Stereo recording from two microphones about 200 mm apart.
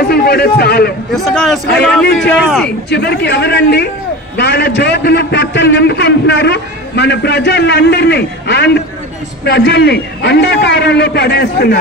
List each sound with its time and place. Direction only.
0.1 s a man's voice: 50° left (ahead or behind)
1.1 s a man's voice: centre (ahead or behind)
2.9 s a man's voice: 55° left (ahead or behind)